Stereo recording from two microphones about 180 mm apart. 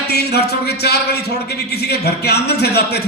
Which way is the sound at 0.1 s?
65° left (ahead or behind).